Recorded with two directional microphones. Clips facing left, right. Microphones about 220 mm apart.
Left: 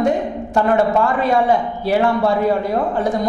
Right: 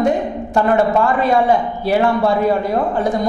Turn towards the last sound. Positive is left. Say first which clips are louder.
# right 1 dB
turn(degrees=-10)  # may be behind; listen again after turning